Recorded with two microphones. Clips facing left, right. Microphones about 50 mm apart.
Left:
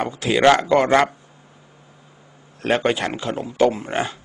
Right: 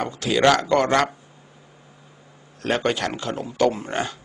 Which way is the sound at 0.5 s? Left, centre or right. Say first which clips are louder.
Left 4 dB; left.